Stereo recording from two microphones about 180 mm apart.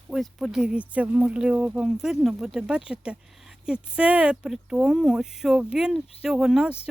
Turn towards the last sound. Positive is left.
turn(degrees=-5)  # may be behind; listen again after turning